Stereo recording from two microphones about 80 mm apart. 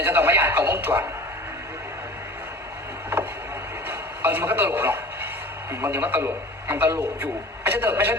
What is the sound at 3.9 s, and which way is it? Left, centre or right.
A man's voice, right.